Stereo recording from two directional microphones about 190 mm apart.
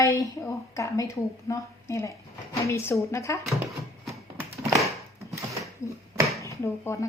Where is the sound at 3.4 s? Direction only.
Centre (ahead or behind).